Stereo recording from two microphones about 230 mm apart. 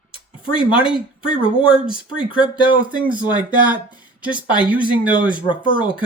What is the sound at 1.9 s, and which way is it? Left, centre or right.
Speech, left.